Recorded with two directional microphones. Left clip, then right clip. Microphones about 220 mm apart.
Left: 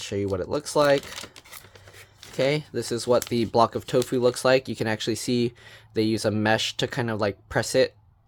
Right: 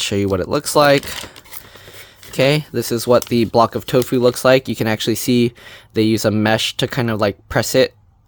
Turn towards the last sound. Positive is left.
turn(degrees=-25)  # may be behind; listen again after turning